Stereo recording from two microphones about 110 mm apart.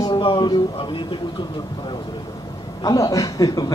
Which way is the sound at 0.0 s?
45° left (ahead or behind).